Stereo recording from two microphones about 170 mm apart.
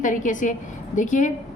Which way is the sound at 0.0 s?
50° left (ahead or behind).